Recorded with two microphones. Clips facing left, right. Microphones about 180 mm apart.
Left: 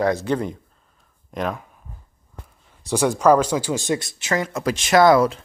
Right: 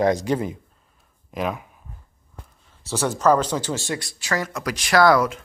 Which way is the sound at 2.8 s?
15° left (ahead or behind).